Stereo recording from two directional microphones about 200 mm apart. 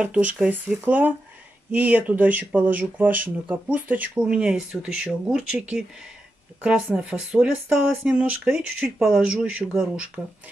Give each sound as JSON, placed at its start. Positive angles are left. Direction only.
{"t": 0.0, "sound": "speech", "side_deg": -5}